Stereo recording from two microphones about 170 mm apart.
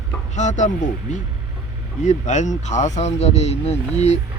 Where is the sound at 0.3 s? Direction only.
45° left (ahead or behind).